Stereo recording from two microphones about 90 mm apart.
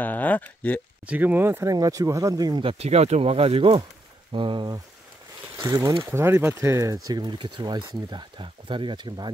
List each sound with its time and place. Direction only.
0.0 s speech: 20° left (ahead or behind)
1.0 s speech: 20° right (ahead or behind)
1.7 s speech: 40° right (ahead or behind)
3.2 s speech: 90° right
4.3 s speech: 70° right (ahead or behind)
5.6 s speech: 35° right (ahead or behind)
7.1 s speech: 55° right (ahead or behind)